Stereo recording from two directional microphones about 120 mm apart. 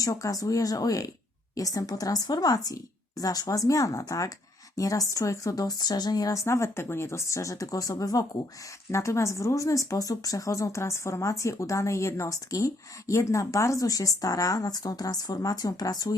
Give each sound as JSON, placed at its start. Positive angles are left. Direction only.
{"t": 0.0, "sound": "speech", "side_deg": 30}